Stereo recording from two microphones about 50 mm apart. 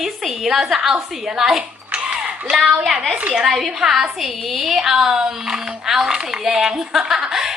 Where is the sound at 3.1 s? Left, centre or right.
Right.